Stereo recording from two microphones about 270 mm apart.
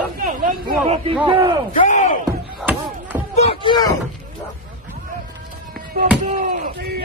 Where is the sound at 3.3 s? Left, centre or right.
Left.